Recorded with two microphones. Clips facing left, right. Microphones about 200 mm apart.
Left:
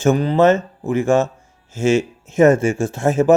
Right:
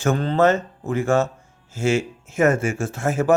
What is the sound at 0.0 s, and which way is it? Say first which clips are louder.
Speech: left 4 dB; 15° left (ahead or behind).